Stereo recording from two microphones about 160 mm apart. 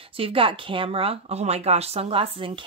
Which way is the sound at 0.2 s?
35° right (ahead or behind).